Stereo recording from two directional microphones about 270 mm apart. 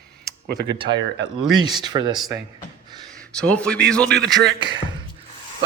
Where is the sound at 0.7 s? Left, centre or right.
Centre.